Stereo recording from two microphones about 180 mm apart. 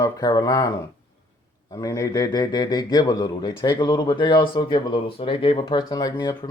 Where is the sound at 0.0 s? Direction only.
20° left (ahead or behind).